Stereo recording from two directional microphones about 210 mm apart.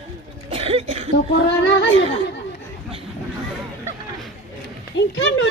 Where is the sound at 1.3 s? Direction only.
50° left (ahead or behind).